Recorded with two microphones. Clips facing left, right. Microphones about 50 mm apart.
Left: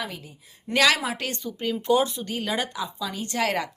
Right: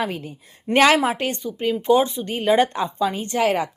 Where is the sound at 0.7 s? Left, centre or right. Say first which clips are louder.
Right 6 dB; right.